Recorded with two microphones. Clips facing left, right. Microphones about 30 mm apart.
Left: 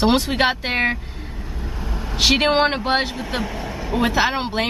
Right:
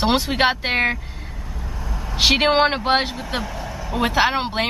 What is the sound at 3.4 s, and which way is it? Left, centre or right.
Speech, centre.